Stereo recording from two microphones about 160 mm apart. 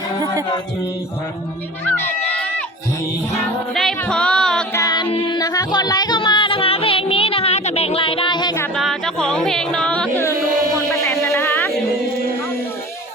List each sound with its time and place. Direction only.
1.9 s speech: 15° left (ahead or behind)
3.8 s music: 5° left (ahead or behind)
4.7 s music: 20° left (ahead or behind)
8.7 s music: centre (ahead or behind)